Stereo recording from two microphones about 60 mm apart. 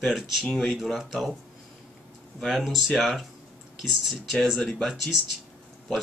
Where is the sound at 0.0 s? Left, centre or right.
Centre.